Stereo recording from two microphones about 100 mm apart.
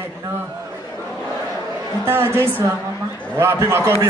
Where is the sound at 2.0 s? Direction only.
25° right (ahead or behind).